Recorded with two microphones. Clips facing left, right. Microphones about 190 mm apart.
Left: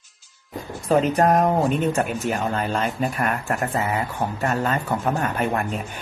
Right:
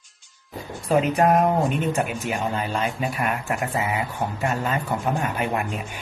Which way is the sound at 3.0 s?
5° right (ahead or behind).